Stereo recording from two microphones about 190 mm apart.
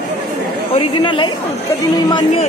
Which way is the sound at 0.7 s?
25° left (ahead or behind).